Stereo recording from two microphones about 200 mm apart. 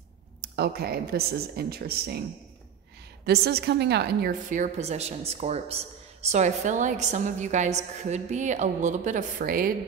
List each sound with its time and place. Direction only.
0.4 s speech: 50° right (ahead or behind)
3.3 s a woman's voice: 55° right (ahead or behind)